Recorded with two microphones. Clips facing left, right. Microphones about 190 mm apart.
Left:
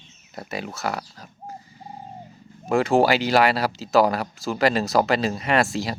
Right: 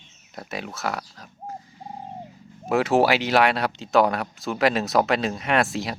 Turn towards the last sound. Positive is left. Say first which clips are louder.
# left 1 dB
turn(degrees=0)  # may be behind; listen again after turning